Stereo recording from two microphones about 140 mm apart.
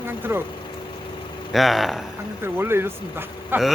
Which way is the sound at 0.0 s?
15° right (ahead or behind).